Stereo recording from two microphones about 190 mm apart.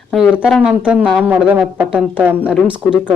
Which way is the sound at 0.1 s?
Centre (ahead or behind).